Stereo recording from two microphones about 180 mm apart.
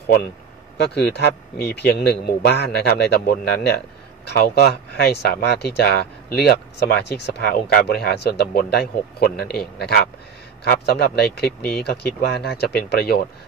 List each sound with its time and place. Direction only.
0.9 s speech: 70° left (ahead or behind)